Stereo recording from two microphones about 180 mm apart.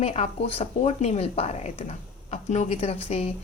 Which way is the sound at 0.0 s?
35° left (ahead or behind).